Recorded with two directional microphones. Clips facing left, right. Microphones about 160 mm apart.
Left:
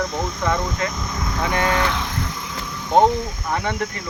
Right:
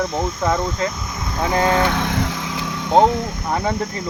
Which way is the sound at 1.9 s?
65° right (ahead or behind).